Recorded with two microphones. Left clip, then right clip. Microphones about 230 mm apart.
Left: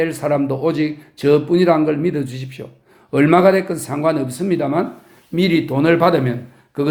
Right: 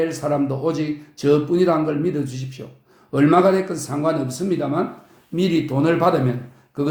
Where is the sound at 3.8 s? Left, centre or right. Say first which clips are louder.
Left 3 dB; left.